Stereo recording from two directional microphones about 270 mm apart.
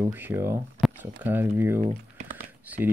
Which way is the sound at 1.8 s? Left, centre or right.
Right.